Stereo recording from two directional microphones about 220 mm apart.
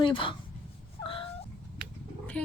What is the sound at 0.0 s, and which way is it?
Speech, 25° left (ahead or behind).